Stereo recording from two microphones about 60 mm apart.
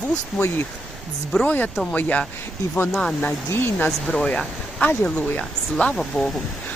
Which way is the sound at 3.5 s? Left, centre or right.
Left.